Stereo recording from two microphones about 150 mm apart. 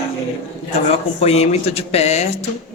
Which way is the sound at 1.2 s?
45° left (ahead or behind).